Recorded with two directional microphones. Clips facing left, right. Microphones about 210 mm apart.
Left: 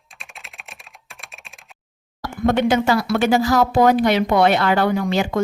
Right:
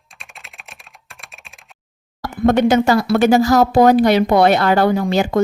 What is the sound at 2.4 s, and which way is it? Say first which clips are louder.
Speech: right 4 dB; 45° right (ahead or behind).